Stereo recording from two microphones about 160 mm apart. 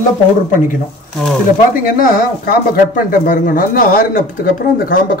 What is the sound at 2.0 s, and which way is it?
Speech, 60° left (ahead or behind).